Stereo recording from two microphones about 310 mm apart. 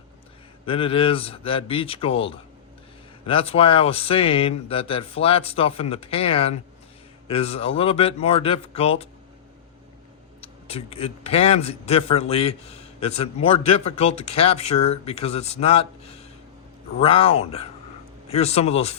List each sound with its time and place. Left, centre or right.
0.6 s a man's voice: centre
10.4 s a man's voice: centre